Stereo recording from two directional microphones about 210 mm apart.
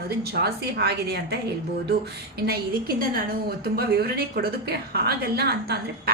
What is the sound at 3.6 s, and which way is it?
A woman's voice, 50° right (ahead or behind).